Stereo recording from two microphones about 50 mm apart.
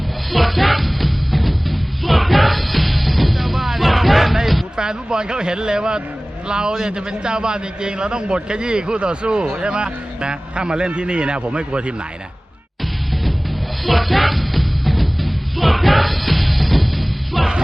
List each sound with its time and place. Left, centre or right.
0.3 s music: centre
4.8 s a man's voice: centre
13.8 s music: centre